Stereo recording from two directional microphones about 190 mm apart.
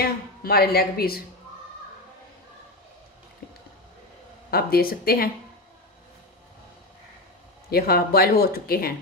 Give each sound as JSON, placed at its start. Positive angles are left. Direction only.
{"t": 0.0, "sound": "speech", "side_deg": 55}
{"t": 4.5, "sound": "speech", "side_deg": 55}
{"t": 7.7, "sound": "speech", "side_deg": 55}